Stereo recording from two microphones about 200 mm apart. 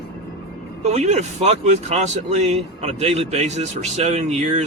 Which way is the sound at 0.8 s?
35° right (ahead or behind).